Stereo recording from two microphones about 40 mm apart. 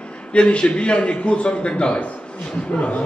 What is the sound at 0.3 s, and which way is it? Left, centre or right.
A man's voice, left.